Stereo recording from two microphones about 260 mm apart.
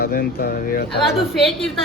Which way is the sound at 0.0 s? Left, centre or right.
Left.